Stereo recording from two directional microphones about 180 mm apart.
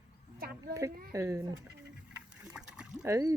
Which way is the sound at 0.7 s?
15° right (ahead or behind).